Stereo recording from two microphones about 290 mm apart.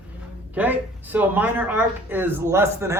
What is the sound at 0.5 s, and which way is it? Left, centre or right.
Speech, centre.